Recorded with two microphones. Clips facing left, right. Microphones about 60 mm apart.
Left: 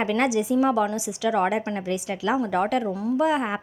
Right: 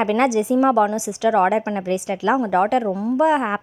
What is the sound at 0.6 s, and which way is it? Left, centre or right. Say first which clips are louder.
A woman's voice: right 5 dB; right.